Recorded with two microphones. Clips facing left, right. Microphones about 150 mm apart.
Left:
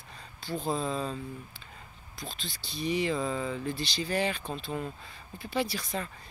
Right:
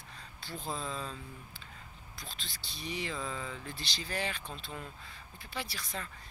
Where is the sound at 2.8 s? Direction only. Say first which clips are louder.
Left 10 dB; 70° left (ahead or behind).